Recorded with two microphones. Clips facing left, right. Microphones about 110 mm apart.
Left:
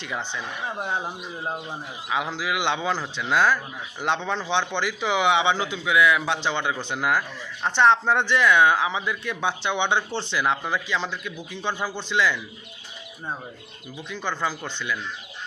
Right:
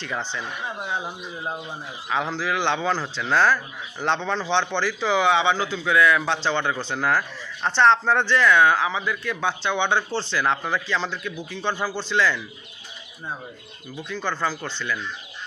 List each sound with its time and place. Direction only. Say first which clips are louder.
0.0 s a man's voice: right 1 dB; 15° left (ahead or behind)
13.9 s a man's voice: right 2 dB; 15° left (ahead or behind)